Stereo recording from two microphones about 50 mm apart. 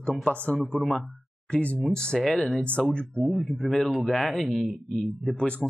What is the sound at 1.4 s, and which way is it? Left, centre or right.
Speech, left.